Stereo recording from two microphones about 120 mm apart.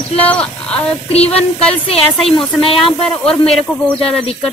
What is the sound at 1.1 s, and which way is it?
Child singing, 60° left (ahead or behind).